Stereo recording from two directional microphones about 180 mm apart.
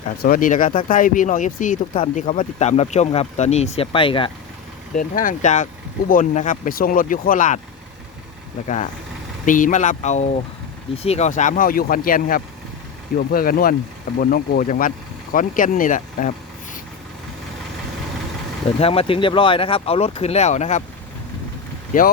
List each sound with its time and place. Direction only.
0.2 s speech: 50° left (ahead or behind); by 4.3 s 30° left (ahead or behind)
4.9 s speech: 45° left (ahead or behind)
8.6 s speech: 40° left (ahead or behind)
18.8 s speech: 30° left (ahead or behind)
21.9 s speech: 50° left (ahead or behind)